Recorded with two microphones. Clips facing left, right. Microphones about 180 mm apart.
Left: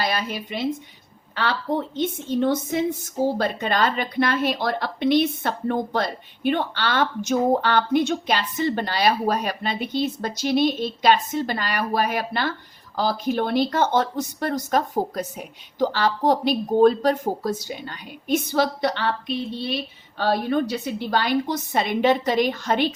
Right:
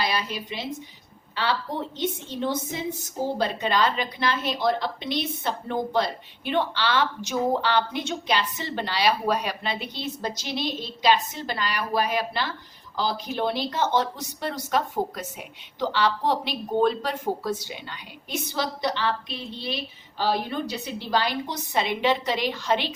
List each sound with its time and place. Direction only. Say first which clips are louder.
0.0 s a woman's voice: left 2 dB; 55° left (ahead or behind)